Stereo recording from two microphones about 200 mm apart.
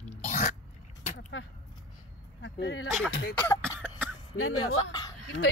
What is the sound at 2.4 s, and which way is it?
Speech, 60° left (ahead or behind).